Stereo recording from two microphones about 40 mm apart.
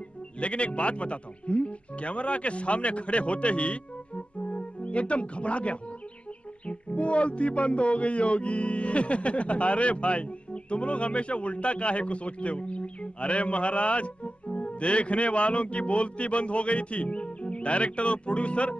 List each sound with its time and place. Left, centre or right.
0.4 s speech: left